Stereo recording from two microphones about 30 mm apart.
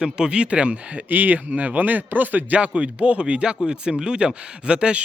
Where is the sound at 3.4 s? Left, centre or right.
Right.